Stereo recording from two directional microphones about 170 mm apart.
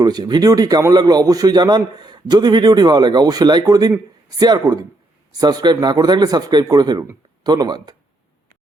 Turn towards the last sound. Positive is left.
turn(degrees=-25)  # may be behind; listen again after turning